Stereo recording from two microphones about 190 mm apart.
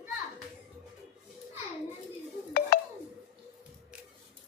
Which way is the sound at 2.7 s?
50° left (ahead or behind).